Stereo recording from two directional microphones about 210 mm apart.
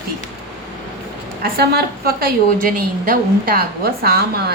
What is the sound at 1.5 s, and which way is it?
A woman's voice, 50° right (ahead or behind).